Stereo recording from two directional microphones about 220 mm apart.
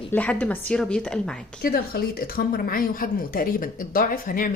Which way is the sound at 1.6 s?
40° left (ahead or behind).